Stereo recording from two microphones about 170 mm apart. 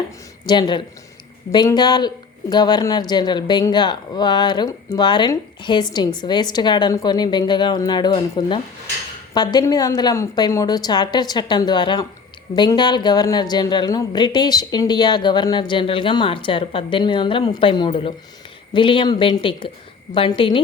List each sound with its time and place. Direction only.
0.4 s a woman's voice: 25° left (ahead or behind)